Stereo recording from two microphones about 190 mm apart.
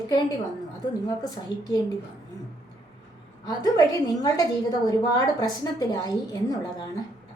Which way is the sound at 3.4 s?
20° left (ahead or behind).